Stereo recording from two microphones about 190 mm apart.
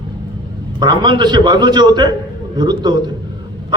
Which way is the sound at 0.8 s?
25° right (ahead or behind).